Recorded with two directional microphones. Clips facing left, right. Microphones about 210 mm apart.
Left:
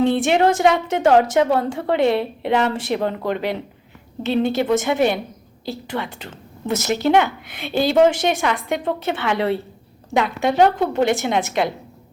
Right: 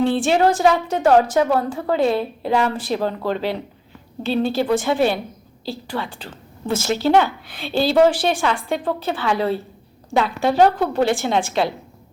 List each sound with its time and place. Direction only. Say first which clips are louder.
0.0 s a woman's voice: left 1 dB; 20° left (ahead or behind)
4.2 s a woman's voice: left 1 dB; 20° left (ahead or behind)